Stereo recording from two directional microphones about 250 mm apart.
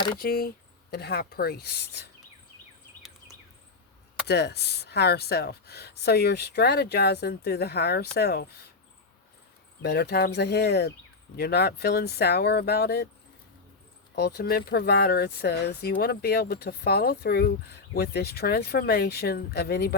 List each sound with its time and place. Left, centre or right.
0.2 s speech: left
4.3 s speech: left
9.8 s speech: left
14.2 s speech: left